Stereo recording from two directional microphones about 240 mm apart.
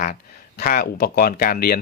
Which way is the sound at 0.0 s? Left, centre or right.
Left.